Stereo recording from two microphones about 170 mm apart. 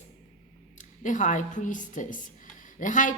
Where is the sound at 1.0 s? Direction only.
50° left (ahead or behind).